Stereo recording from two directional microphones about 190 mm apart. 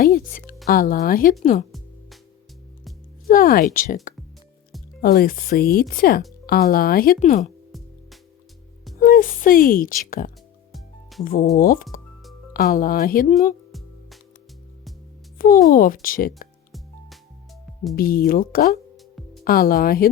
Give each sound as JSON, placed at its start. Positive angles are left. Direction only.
{"t": 0.1, "sound": "a woman's voice", "side_deg": 45}
{"t": 3.2, "sound": "speech", "side_deg": 50}
{"t": 4.1, "sound": "music", "side_deg": 45}
{"t": 4.9, "sound": "a woman's voice", "side_deg": 50}
{"t": 9.0, "sound": "a woman's voice", "side_deg": 45}
{"t": 10.7, "sound": "music", "side_deg": 0}
{"t": 11.5, "sound": "a woman's voice", "side_deg": 50}
{"t": 15.4, "sound": "a woman's voice", "side_deg": 50}
{"t": 17.9, "sound": "a woman's voice", "side_deg": 50}